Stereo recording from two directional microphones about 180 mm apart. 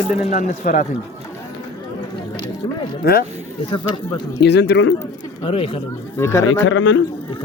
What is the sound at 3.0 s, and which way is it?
Speech, 60° left (ahead or behind).